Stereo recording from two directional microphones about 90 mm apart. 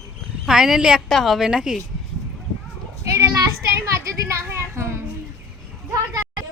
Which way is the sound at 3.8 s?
30° right (ahead or behind).